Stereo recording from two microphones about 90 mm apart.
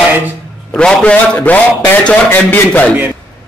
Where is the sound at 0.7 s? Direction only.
10° left (ahead or behind).